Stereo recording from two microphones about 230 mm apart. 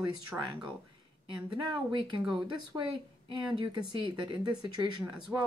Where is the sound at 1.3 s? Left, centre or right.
Right.